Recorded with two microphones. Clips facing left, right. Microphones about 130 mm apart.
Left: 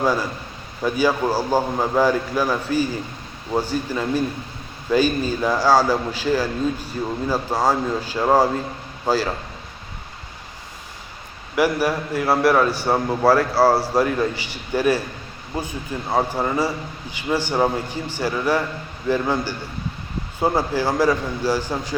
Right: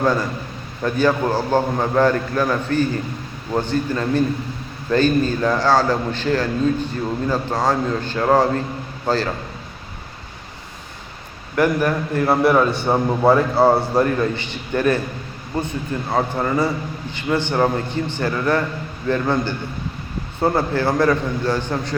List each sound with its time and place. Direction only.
0.0 s a man's voice: 10° left (ahead or behind)
11.5 s a man's voice: 10° left (ahead or behind)
13.1 s a man's voice: 20° right (ahead or behind)
13.5 s a man's voice: 5° left (ahead or behind)
16.0 s a man's voice: 10° left (ahead or behind)